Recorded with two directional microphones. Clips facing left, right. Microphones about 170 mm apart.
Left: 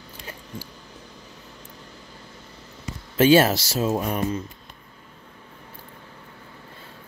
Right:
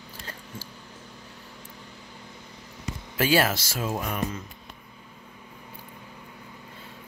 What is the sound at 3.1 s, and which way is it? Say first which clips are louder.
Speech: left 7 dB; 25° left (ahead or behind).